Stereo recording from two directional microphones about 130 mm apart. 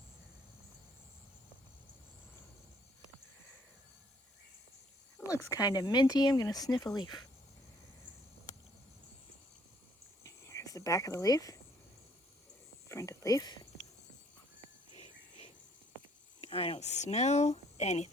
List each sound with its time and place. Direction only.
5.2 s speech: 25° left (ahead or behind)
10.2 s a sound: 25° left (ahead or behind)
12.9 s speech: 25° left (ahead or behind)
14.9 s whispering: 50° left (ahead or behind)
16.4 s speech: 45° left (ahead or behind)